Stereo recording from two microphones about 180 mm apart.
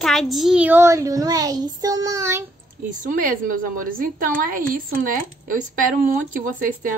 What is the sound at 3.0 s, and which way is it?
Speech, 50° right (ahead or behind).